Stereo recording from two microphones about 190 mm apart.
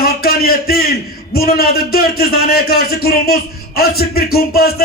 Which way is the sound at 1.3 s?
55° left (ahead or behind).